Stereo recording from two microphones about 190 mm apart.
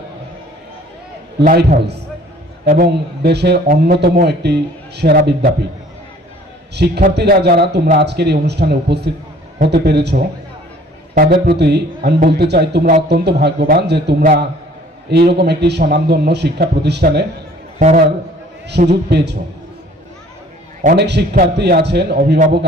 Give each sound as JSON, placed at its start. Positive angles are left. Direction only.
{"t": 1.5, "sound": "a man's voice", "side_deg": -55}
{"t": 6.7, "sound": "a man's voice", "side_deg": -60}
{"t": 17.7, "sound": "a man's voice", "side_deg": -45}
{"t": 18.9, "sound": "a man's voice", "side_deg": -60}
{"t": 20.9, "sound": "a man's voice", "side_deg": -60}